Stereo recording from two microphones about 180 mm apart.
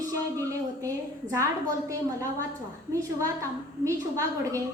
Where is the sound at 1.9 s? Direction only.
20° right (ahead or behind).